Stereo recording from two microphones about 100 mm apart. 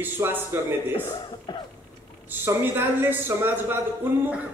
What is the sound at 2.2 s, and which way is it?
A man's voice, 25° right (ahead or behind).